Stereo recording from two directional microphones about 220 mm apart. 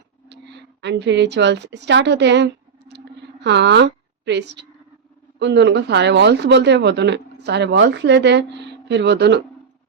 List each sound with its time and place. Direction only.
0.3 s speech: 50° right (ahead or behind)
2.9 s a sound: 50° right (ahead or behind)
5.4 s speech: 50° right (ahead or behind)